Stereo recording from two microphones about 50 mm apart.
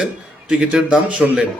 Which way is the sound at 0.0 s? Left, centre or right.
Centre.